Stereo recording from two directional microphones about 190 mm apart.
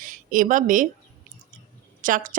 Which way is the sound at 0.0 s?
45° right (ahead or behind).